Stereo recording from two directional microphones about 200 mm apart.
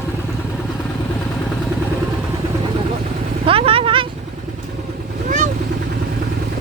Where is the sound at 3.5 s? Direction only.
25° right (ahead or behind).